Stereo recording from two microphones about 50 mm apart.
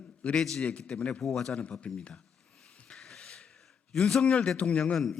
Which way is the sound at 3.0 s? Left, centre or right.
Centre.